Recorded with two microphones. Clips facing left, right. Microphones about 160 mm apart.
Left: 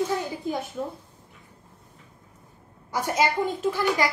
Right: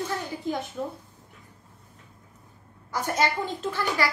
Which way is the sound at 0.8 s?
5° left (ahead or behind).